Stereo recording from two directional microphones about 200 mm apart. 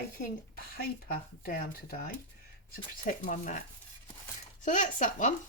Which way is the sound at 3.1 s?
40° left (ahead or behind).